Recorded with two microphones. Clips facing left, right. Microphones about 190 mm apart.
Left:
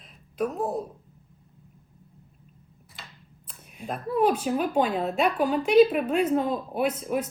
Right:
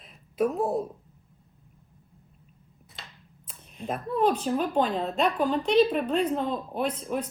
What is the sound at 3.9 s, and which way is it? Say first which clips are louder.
A woman's voice: left 1 dB; 5° left (ahead or behind).